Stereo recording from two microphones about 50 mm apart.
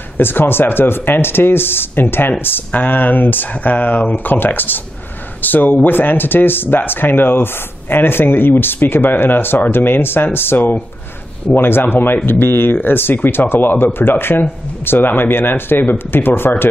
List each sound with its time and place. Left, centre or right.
0.2 s speech: left